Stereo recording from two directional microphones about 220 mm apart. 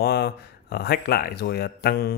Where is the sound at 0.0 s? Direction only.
45° left (ahead or behind).